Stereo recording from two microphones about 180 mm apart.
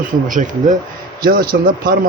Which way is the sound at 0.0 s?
45° right (ahead or behind).